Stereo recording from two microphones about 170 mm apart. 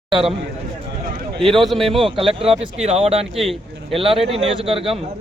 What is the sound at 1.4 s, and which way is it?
Speech, centre (ahead or behind).